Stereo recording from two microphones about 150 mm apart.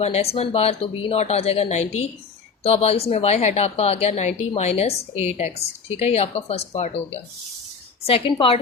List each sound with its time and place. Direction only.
0.0 s a woman's voice: 45° left (ahead or behind)